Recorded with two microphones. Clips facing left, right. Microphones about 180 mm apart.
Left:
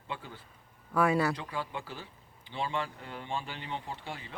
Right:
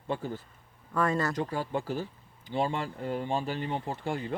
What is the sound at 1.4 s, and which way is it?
Speech, 45° right (ahead or behind).